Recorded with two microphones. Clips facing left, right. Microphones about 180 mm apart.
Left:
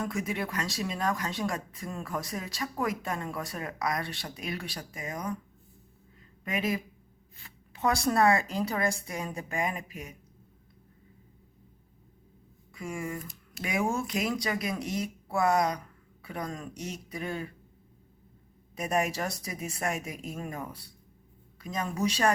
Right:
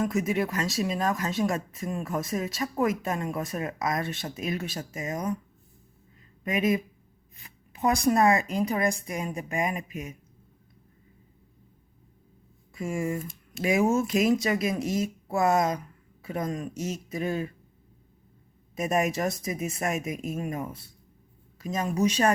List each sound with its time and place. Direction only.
0.0 s speech: 20° right (ahead or behind)
6.4 s speech: 20° right (ahead or behind)
12.7 s speech: 25° right (ahead or behind)
18.8 s speech: 20° right (ahead or behind)